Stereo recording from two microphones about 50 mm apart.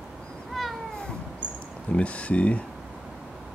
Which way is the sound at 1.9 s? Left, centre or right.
Left.